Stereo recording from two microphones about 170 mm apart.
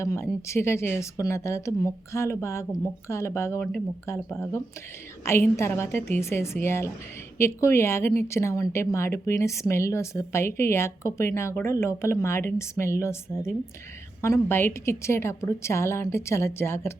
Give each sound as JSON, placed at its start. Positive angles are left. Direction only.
{"t": 0.0, "sound": "speech", "side_deg": 15}